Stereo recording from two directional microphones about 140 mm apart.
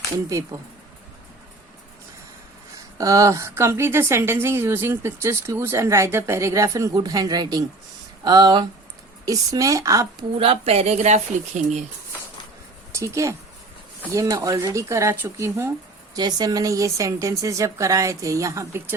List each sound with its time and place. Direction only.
3.0 s speech: 25° right (ahead or behind)
10.3 s a woman's voice: 45° right (ahead or behind)
12.9 s a woman's voice: 20° right (ahead or behind)